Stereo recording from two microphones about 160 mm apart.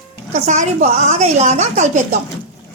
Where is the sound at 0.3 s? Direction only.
50° right (ahead or behind).